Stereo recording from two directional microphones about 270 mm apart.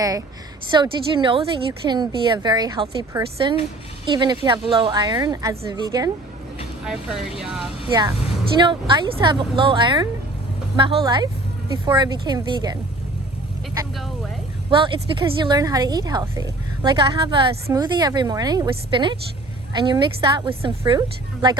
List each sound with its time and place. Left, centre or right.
0.7 s a woman's voice: centre
6.8 s speech: centre
7.9 s a woman's voice: centre
14.7 s a woman's voice: centre